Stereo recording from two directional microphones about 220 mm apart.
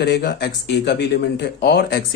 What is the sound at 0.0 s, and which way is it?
Speech, 45° left (ahead or behind).